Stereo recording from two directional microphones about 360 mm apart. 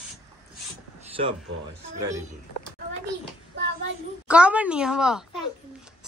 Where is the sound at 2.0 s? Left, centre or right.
Centre.